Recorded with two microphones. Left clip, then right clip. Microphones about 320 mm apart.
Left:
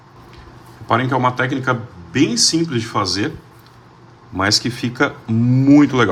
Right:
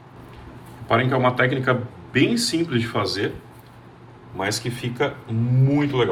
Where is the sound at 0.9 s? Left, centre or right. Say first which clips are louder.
Left 3 dB; centre.